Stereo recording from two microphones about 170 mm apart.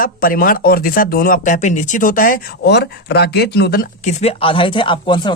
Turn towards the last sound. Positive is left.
turn(degrees=30)  # may be behind; listen again after turning